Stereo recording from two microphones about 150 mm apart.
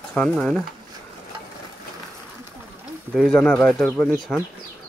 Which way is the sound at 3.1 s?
5° left (ahead or behind).